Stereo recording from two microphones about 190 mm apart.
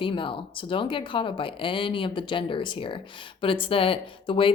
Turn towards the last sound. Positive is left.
turn(degrees=30)  # may be behind; listen again after turning